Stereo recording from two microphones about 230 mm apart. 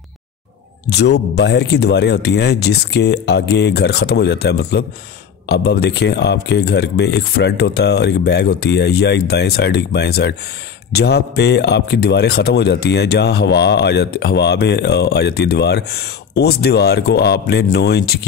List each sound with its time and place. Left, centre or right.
0.8 s speech: left